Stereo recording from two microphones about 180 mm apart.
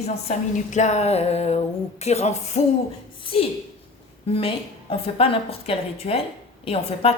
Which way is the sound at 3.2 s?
30° left (ahead or behind).